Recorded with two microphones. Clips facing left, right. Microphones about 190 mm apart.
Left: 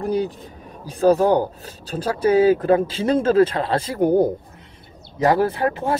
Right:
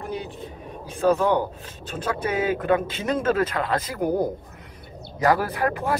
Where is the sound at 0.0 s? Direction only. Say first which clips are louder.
Left 10 dB; 35° left (ahead or behind).